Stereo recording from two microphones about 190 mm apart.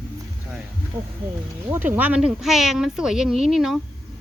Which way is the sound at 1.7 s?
10° right (ahead or behind).